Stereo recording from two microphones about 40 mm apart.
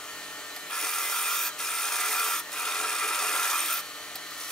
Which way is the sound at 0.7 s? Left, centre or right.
Centre.